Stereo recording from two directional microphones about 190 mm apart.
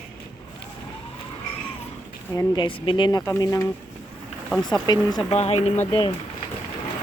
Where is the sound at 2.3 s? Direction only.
25° left (ahead or behind).